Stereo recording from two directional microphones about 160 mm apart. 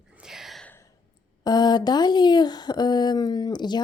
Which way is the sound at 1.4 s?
25° left (ahead or behind).